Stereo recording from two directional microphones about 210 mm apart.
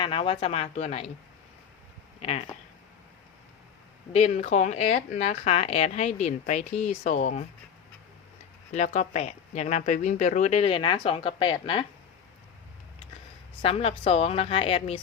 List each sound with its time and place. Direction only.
0.0 s a woman's voice: 25° left (ahead or behind)
4.1 s speech: 30° left (ahead or behind)
8.7 s speech: 35° left (ahead or behind)
13.6 s a woman's voice: 25° left (ahead or behind)